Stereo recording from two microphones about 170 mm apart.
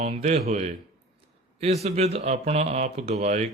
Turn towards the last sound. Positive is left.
turn(degrees=-40)  # may be behind; listen again after turning